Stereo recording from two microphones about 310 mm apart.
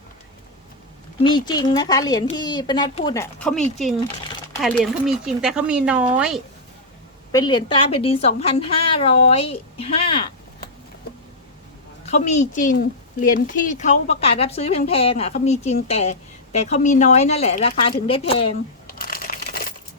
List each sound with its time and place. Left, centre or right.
1.2 s a woman's voice: centre
4.8 s speech: centre
7.3 s a woman's voice: centre
12.0 s a woman's voice: left
18.9 s typewriter: left